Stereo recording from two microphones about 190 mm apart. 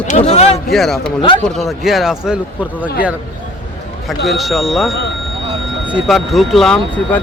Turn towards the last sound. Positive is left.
turn(degrees=0)  # may be behind; listen again after turning